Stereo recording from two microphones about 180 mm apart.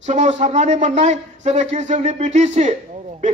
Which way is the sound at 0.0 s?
40° right (ahead or behind).